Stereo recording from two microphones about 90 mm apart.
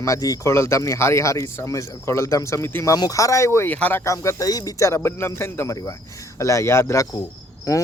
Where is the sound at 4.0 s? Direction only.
35° left (ahead or behind).